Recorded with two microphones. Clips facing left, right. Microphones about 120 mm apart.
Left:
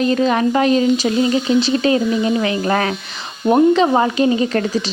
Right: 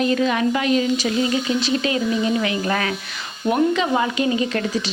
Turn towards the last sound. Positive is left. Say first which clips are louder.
# left 4 dB
turn(degrees=35)  # may be behind; listen again after turning